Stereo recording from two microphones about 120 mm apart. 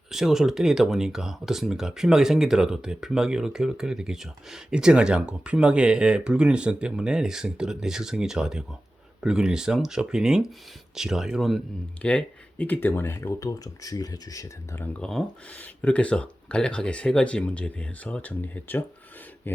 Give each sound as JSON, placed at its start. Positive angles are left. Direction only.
{"t": 0.1, "sound": "speech", "side_deg": -5}
{"t": 12.0, "sound": "speech", "side_deg": 10}
{"t": 14.9, "sound": "speech", "side_deg": 5}
{"t": 19.5, "sound": "a sound", "side_deg": 15}